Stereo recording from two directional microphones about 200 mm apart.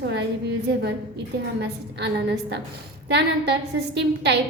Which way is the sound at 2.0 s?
60° right (ahead or behind).